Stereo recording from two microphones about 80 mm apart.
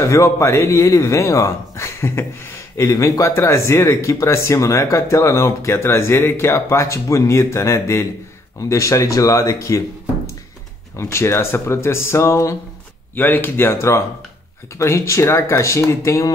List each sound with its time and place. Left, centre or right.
0.0 s speech: left
11.0 s speech: left
13.1 s speech: left